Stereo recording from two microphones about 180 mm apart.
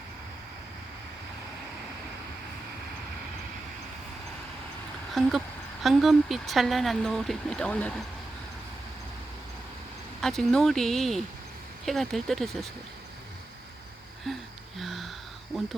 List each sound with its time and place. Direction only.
5.2 s speech: centre (ahead or behind)
10.2 s speech: centre (ahead or behind)
14.8 s a sound: centre (ahead or behind)